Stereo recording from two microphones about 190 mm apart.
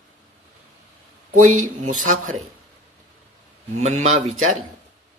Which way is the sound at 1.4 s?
40° right (ahead or behind).